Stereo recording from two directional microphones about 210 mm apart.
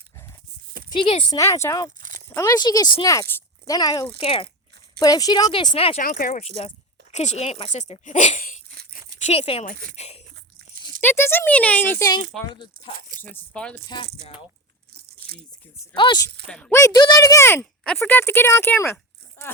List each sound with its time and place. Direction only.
0.9 s speech: 15° left (ahead or behind)
2.0 s a sound: 40° right (ahead or behind)
2.3 s speech: 15° left (ahead or behind)
6.0 s speech: 40° left (ahead or behind)
11.0 s speech: 10° left (ahead or behind)
13.2 s speech: 5° left (ahead or behind)
13.8 s speech: 20° left (ahead or behind)
16.0 s speech: 20° left (ahead or behind)
16.5 s speech: 5° left (ahead or behind)